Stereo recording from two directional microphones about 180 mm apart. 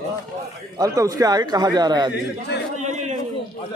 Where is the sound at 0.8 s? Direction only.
20° right (ahead or behind).